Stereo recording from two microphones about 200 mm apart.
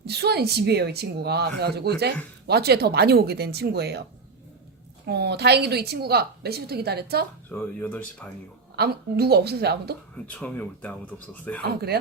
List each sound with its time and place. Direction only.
0.0 s a woman's voice: 55° right (ahead or behind)
5.0 s a woman's voice: 55° right (ahead or behind)
7.5 s speech: 10° left (ahead or behind)
8.7 s a woman's voice: 50° right (ahead or behind)
10.3 s speech: 10° left (ahead or behind)
11.6 s a woman's voice: 50° right (ahead or behind)